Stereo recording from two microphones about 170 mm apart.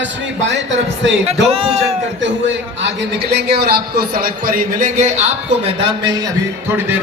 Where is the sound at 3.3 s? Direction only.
75° right (ahead or behind); by 5.2 s 45° right (ahead or behind).